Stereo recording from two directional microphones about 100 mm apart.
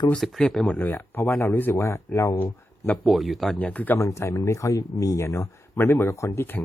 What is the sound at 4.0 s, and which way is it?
Speech, 30° left (ahead or behind).